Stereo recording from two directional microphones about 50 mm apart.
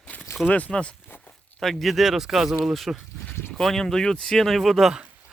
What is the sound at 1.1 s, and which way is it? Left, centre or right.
Zipper, left.